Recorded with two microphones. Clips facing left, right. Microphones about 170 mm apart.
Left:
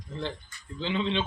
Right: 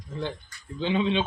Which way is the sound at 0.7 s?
15° right (ahead or behind).